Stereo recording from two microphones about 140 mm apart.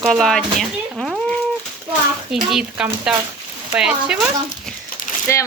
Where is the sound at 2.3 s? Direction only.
5° right (ahead or behind).